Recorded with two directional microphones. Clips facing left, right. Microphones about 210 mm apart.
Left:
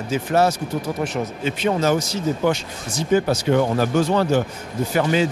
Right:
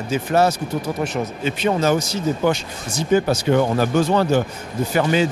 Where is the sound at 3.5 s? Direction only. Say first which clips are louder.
Right 1 dB; 25° right (ahead or behind).